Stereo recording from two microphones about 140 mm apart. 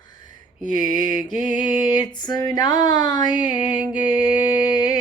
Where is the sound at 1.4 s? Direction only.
30° left (ahead or behind).